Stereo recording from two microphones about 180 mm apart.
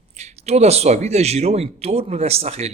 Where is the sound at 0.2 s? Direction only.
35° right (ahead or behind).